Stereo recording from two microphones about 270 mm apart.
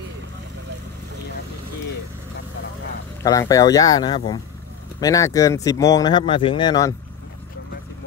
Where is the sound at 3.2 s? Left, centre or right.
Centre.